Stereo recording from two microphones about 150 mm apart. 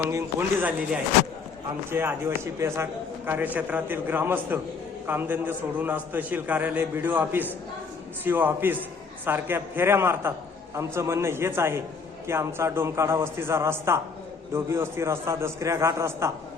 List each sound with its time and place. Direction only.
0.1 s speech: 20° right (ahead or behind)
1.9 s speech: 15° right (ahead or behind)